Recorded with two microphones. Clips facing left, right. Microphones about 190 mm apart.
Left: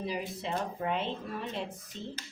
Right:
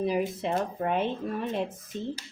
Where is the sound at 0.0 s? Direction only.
50° right (ahead or behind).